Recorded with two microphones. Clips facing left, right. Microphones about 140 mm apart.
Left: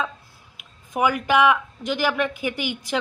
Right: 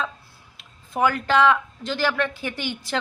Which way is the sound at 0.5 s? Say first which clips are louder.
Left 1 dB; 15° left (ahead or behind).